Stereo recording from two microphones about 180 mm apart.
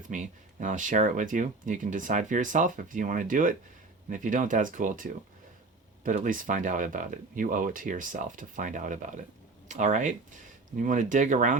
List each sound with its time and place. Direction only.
0.1 s speech: 45° right (ahead or behind)
6.1 s speech: 45° right (ahead or behind)